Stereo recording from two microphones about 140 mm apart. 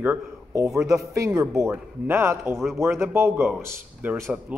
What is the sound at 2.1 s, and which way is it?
A man's voice, 15° right (ahead or behind).